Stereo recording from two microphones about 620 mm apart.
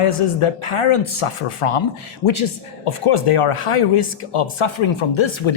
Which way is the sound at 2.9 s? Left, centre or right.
Left.